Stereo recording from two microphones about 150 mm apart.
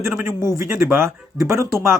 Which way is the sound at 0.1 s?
10° right (ahead or behind).